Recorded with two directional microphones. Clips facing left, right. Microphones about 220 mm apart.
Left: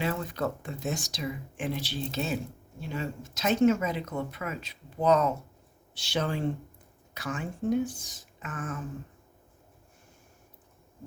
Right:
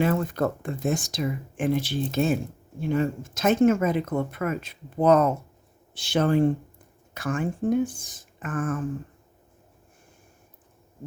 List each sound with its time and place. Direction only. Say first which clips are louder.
0.0 s speech: right 7 dB; 50° right (ahead or behind)